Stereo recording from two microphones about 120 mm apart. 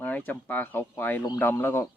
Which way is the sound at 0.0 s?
15° left (ahead or behind).